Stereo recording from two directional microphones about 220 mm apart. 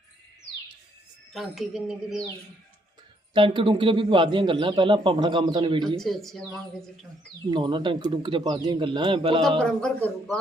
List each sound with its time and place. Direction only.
1.3 s a woman's voice: centre (ahead or behind)
3.3 s a man's voice: 25° right (ahead or behind)
6.0 s a woman's voice: centre (ahead or behind)
7.5 s a man's voice: 20° right (ahead or behind)
9.6 s a woman's voice: 5° left (ahead or behind)